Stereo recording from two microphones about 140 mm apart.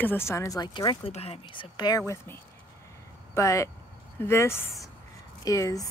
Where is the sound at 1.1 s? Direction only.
45° left (ahead or behind).